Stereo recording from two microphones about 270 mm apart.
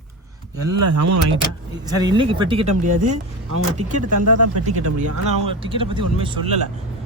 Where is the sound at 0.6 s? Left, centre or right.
Right.